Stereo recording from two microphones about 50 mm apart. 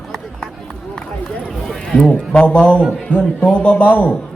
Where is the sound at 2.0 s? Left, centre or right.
Left.